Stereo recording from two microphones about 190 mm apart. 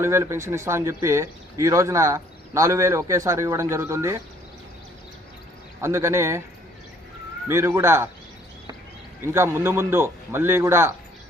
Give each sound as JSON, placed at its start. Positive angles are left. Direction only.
{"t": 0.0, "sound": "speech", "side_deg": -15}
{"t": 5.8, "sound": "speech", "side_deg": -15}
{"t": 7.4, "sound": "speech", "side_deg": -10}
{"t": 9.2, "sound": "speech", "side_deg": -15}